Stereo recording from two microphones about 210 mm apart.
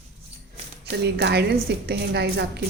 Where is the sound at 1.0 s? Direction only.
55° right (ahead or behind).